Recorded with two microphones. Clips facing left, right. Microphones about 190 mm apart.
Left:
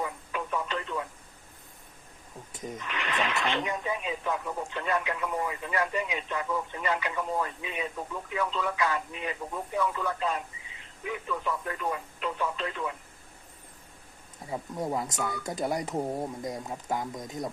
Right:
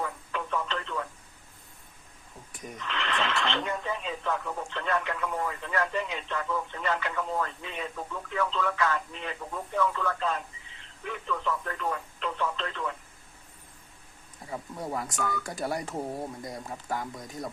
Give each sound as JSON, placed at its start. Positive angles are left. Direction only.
{"t": 0.0, "sound": "telephone", "side_deg": 10}
{"t": 2.5, "sound": "speech", "side_deg": 20}
{"t": 14.5, "sound": "speech", "side_deg": 20}